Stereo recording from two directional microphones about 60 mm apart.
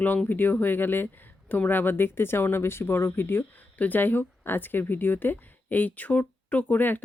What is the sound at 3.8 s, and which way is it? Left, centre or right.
Speech, left.